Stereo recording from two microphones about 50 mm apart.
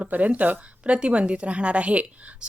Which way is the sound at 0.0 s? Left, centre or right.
Right.